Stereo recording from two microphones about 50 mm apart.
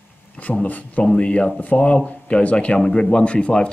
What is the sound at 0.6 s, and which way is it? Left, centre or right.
Speech, left.